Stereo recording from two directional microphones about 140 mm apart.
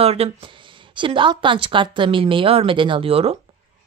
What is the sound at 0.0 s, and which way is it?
Speech, 45° right (ahead or behind).